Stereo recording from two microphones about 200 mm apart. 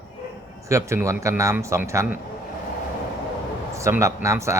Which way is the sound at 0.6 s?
15° right (ahead or behind).